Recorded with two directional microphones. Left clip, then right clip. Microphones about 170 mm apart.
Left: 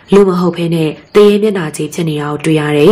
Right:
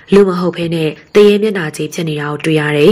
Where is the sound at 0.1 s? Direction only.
15° right (ahead or behind).